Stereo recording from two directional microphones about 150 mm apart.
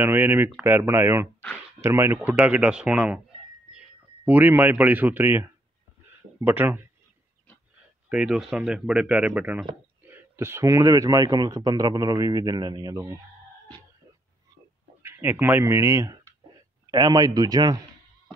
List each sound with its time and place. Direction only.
0.0 s a man's voice: 15° right (ahead or behind)
8.1 s speech: 5° right (ahead or behind); by 13.2 s 25° right (ahead or behind)
15.0 s speech: 15° right (ahead or behind)